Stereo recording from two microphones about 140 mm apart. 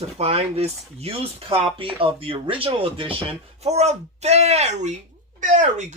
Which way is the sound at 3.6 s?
50° right (ahead or behind).